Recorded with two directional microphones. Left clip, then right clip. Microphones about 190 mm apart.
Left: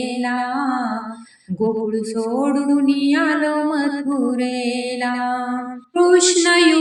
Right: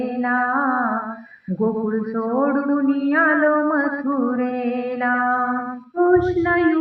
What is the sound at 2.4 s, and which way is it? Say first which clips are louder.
Mantra: left 2 dB; 35° left (ahead or behind).